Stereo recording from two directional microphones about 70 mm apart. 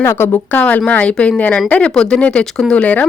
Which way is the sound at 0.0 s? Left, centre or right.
Left.